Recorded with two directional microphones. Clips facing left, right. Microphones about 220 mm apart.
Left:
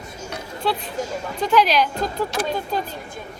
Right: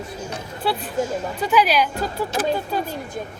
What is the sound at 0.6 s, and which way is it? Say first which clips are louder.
Speech: right 2 dB; 10° right (ahead or behind).